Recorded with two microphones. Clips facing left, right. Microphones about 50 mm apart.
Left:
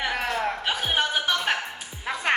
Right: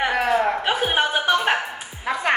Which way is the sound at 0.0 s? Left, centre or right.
Right.